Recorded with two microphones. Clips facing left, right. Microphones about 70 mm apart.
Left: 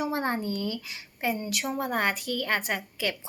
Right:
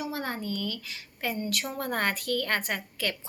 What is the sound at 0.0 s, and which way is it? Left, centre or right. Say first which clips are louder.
Speech: left 5 dB; left.